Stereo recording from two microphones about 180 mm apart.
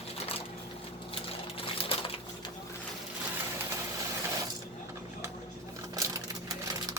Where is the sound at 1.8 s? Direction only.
30° left (ahead or behind).